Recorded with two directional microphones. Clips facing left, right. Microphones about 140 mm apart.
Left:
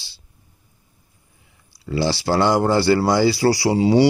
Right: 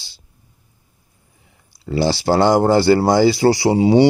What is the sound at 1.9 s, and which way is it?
Speech, 25° right (ahead or behind).